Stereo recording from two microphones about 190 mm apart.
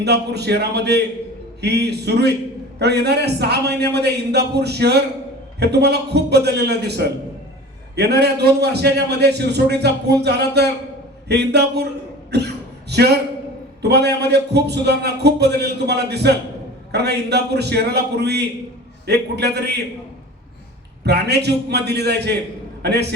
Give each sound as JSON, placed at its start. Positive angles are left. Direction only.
{"t": 0.0, "sound": "a man's voice", "side_deg": -60}
{"t": 21.0, "sound": "a man's voice", "side_deg": -60}